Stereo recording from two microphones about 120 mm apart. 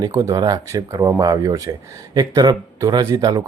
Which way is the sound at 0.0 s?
25° right (ahead or behind).